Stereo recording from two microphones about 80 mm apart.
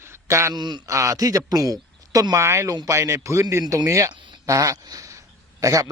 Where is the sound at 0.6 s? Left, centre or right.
Right.